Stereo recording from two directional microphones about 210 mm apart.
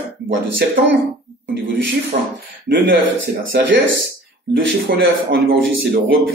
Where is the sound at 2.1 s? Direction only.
40° right (ahead or behind).